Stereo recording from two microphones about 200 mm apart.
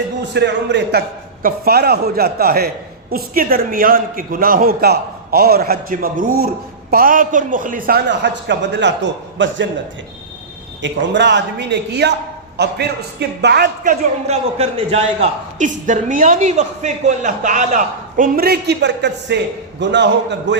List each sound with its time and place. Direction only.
0.3 s a man's voice: 60° right (ahead or behind)
10.8 s speech: 65° right (ahead or behind)
13.8 s a man's voice: 30° right (ahead or behind); by 20.6 s 60° right (ahead or behind)